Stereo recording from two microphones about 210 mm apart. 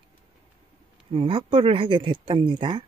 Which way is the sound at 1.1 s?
25° right (ahead or behind).